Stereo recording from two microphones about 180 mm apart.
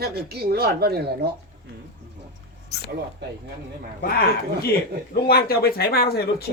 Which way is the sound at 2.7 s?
65° left (ahead or behind).